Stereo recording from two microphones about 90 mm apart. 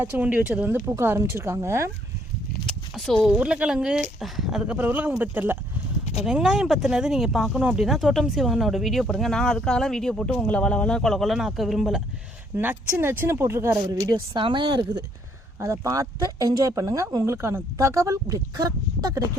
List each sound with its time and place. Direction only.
0.0 s a woman's voice: 20° right (ahead or behind)
2.7 s a sound: 5° left (ahead or behind)
3.2 s speech: 10° right (ahead or behind)
6.2 s speech: 10° right (ahead or behind)
12.5 s a woman's voice: 25° right (ahead or behind)
14.1 s speech: 65° right (ahead or behind)
15.6 s speech: 35° right (ahead or behind)